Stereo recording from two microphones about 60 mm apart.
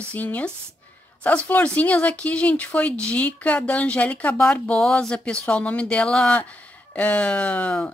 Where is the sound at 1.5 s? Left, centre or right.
Left.